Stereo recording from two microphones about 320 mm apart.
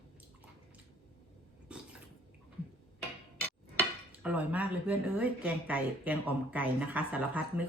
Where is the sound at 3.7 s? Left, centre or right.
Centre.